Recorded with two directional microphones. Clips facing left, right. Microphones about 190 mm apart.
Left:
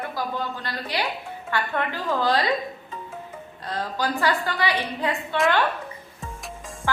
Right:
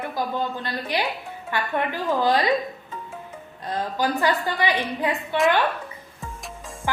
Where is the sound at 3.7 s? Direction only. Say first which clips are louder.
Right 2 dB; 15° right (ahead or behind).